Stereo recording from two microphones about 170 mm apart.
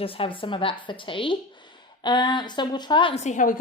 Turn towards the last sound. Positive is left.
turn(degrees=45)  # may be behind; listen again after turning